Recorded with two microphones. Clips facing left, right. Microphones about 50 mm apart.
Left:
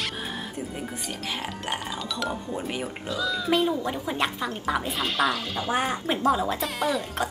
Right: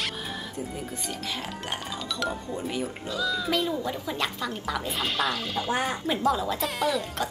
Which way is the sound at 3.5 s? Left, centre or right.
Left.